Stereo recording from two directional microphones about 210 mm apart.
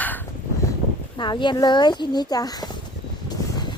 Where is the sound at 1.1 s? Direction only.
20° left (ahead or behind).